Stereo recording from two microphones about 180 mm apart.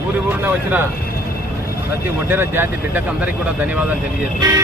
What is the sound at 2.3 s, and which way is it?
Speech, 10° right (ahead or behind).